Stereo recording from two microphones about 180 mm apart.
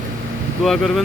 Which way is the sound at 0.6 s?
Centre (ahead or behind).